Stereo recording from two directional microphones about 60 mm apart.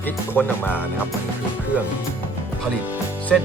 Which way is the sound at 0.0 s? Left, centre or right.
Left.